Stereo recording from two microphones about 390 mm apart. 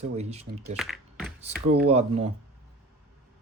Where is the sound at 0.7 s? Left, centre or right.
Centre.